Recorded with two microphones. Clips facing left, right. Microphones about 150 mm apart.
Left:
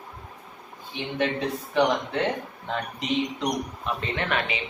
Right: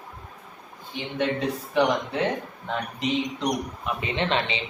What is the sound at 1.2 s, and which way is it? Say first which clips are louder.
A man's voice: right 1 dB; centre (ahead or behind).